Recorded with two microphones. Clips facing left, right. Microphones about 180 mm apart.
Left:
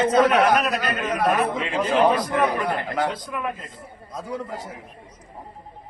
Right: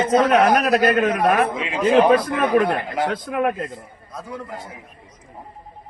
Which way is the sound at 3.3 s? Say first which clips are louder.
Right 8 dB; 60° right (ahead or behind).